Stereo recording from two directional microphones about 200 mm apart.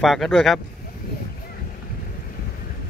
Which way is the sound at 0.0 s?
Centre (ahead or behind).